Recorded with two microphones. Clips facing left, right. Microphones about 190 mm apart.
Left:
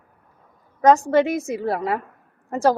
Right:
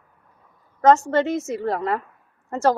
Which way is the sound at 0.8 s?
15° left (ahead or behind).